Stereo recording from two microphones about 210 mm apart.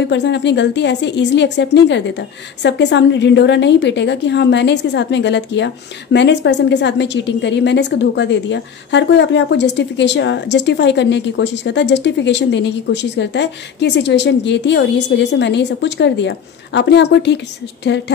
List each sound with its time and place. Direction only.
0.1 s a woman's voice: 55° left (ahead or behind)